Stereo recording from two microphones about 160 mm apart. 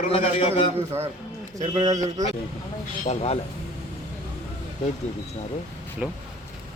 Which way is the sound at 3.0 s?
45° left (ahead or behind).